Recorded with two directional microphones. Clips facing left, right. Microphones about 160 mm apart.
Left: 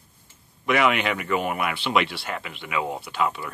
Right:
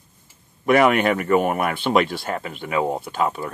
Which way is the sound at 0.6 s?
45° right (ahead or behind).